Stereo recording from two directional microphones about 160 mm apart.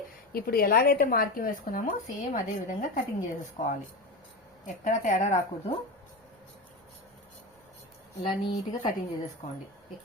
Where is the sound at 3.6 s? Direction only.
45° left (ahead or behind).